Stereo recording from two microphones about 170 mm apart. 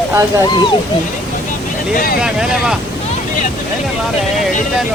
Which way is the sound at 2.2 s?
5° right (ahead or behind).